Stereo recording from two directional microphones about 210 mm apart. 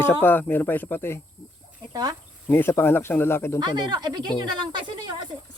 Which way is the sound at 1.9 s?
20° right (ahead or behind).